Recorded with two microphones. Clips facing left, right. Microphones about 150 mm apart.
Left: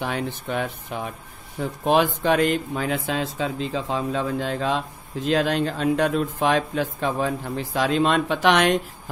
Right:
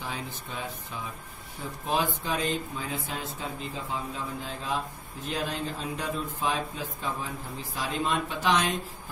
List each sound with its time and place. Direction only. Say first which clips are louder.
0.0 s speech: left 10 dB; 70° left (ahead or behind)